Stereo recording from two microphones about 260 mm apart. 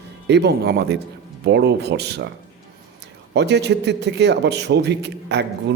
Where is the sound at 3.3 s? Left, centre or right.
Right.